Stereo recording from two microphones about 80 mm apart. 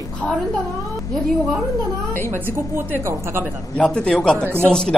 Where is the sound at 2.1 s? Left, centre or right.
Left.